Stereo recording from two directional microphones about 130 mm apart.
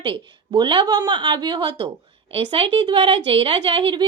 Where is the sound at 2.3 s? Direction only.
45° right (ahead or behind).